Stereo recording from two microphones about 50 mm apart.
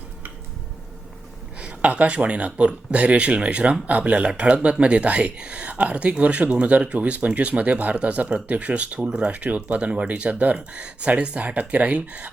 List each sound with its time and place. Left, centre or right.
1.5 s speech: right
9.0 s speech: centre
9.3 s speech: right